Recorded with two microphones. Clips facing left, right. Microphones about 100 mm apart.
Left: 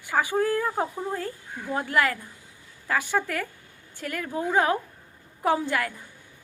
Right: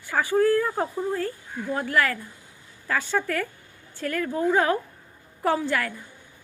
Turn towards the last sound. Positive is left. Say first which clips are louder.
# even
turn(degrees=20)  # may be behind; listen again after turning